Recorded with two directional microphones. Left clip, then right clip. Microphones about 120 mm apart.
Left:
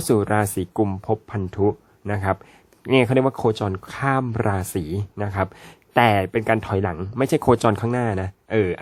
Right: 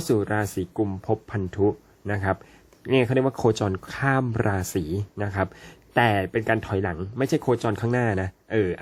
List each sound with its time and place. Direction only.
0.0 s speech: 35° left (ahead or behind)
1.0 s speech: 20° left (ahead or behind)
3.3 s speech: 10° left (ahead or behind); by 7.5 s 35° left (ahead or behind)
7.5 s speech: 50° left (ahead or behind)
7.8 s speech: 15° left (ahead or behind)
8.4 s speech: 30° left (ahead or behind)